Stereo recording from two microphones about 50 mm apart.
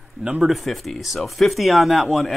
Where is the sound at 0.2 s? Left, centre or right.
Centre.